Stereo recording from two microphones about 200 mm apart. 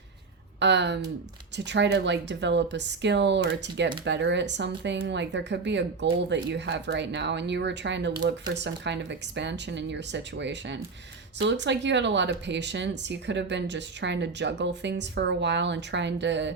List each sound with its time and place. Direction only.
0.6 s speech: 60° right (ahead or behind)